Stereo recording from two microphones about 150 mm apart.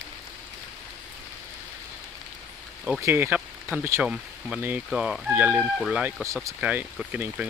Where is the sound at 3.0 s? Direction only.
15° right (ahead or behind).